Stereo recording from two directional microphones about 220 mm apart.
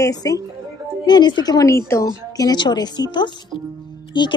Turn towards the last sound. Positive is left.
turn(degrees=20)  # may be behind; listen again after turning